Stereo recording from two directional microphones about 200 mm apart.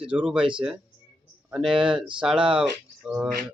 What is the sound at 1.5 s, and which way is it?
Speech, centre (ahead or behind).